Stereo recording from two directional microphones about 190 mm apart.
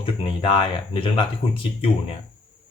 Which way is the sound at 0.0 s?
30° left (ahead or behind).